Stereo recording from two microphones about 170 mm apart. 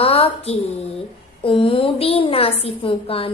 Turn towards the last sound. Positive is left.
turn(degrees=35)  # may be behind; listen again after turning